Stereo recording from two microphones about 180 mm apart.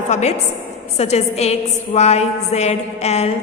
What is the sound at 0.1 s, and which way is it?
A woman's voice, 40° left (ahead or behind).